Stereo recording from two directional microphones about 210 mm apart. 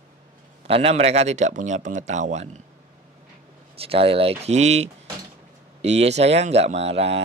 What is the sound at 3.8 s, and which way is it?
Speech, 25° right (ahead or behind).